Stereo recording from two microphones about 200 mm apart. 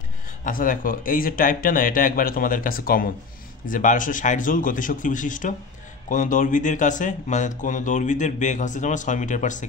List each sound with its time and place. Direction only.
0.4 s speech: 45° left (ahead or behind)